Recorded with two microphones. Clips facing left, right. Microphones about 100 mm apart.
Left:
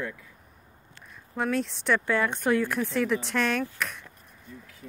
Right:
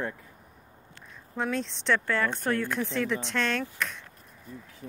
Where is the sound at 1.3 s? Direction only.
5° left (ahead or behind).